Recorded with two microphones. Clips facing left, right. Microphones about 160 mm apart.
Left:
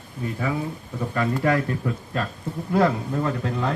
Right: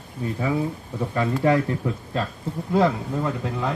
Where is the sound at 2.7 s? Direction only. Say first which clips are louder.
Even; 15° right (ahead or behind).